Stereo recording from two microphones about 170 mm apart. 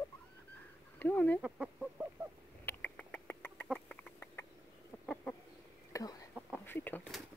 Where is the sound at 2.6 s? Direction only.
10° left (ahead or behind).